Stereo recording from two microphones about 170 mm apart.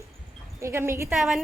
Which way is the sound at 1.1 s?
Centre (ahead or behind).